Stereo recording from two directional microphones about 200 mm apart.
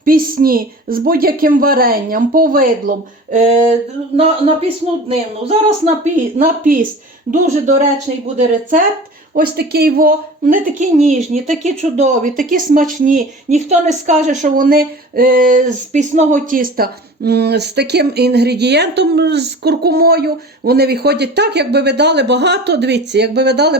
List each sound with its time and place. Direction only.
0.0 s speech: 45° right (ahead or behind)
5.0 s speech: 30° right (ahead or behind)
6.4 s speech: 45° right (ahead or behind)
9.3 s speech: 50° right (ahead or behind)